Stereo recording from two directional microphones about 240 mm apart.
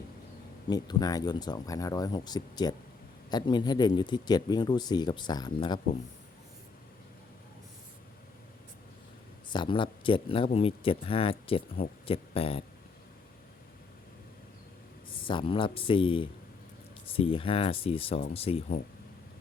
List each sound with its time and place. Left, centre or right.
0.7 s speech: centre
9.5 s speech: centre
15.3 s speech: left